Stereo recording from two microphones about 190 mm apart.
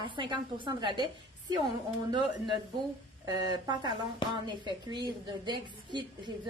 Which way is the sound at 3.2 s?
20° right (ahead or behind).